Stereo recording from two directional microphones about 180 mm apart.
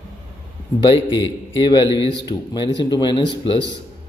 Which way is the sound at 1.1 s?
25° left (ahead or behind).